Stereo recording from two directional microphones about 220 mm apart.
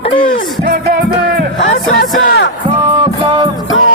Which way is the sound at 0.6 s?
45° right (ahead or behind).